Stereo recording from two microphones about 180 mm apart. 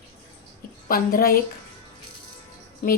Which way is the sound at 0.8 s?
55° left (ahead or behind).